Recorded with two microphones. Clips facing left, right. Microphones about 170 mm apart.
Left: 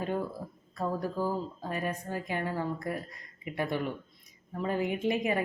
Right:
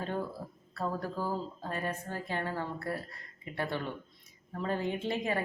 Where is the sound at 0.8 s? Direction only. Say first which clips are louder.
Left 3 dB; 15° left (ahead or behind).